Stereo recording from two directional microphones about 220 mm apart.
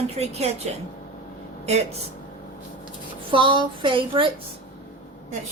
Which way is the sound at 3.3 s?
25° right (ahead or behind).